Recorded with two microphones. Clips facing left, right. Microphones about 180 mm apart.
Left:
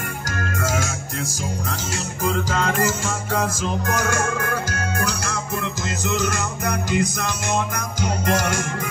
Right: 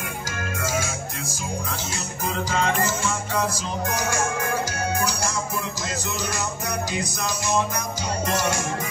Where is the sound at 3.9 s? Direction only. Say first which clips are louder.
Left 2 dB; 60° left (ahead or behind).